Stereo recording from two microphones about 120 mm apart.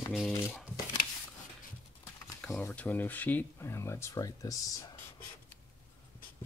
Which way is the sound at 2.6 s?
15° left (ahead or behind).